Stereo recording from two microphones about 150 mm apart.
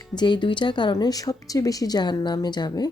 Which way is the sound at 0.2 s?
30° left (ahead or behind).